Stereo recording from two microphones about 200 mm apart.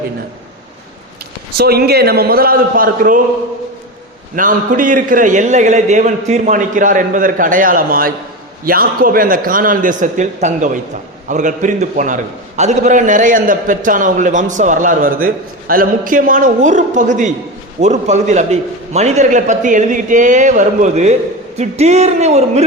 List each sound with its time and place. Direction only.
1.5 s a man's voice: 50° right (ahead or behind)
4.4 s a man's voice: 40° right (ahead or behind)